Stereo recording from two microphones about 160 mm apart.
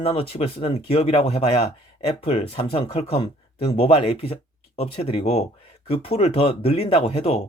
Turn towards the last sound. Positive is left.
turn(degrees=35)  # may be behind; listen again after turning